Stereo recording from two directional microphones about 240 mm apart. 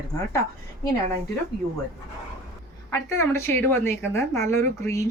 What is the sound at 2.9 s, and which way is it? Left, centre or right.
A woman's voice, centre.